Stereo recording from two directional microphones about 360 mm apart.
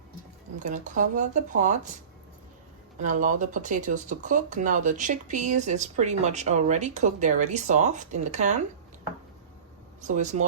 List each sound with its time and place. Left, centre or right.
0.6 s speech: right
3.0 s speech: right
10.0 s speech: centre